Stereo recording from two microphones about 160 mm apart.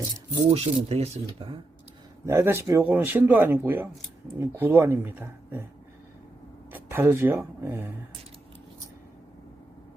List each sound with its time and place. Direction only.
0.5 s speech: 40° right (ahead or behind)
2.2 s speech: 15° right (ahead or behind)
6.7 s speech: 15° right (ahead or behind)